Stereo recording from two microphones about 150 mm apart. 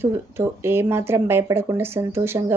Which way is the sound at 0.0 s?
15° right (ahead or behind).